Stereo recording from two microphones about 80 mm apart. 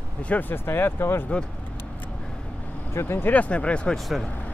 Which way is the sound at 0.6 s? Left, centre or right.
Left.